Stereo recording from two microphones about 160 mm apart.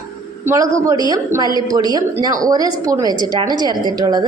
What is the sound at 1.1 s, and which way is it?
A woman's voice, 25° right (ahead or behind).